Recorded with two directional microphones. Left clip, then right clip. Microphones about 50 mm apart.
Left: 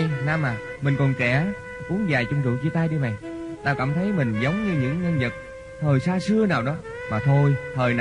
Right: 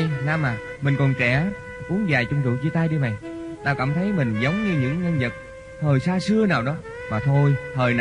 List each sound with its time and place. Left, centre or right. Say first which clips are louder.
0.0 s speech: right 1 dB; left